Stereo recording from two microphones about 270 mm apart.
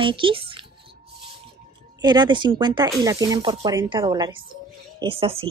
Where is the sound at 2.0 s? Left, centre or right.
Centre.